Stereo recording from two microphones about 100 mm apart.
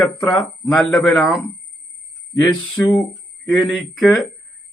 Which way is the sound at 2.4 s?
5° left (ahead or behind).